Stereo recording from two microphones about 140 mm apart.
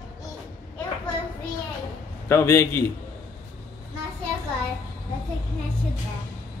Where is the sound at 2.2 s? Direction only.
20° left (ahead or behind).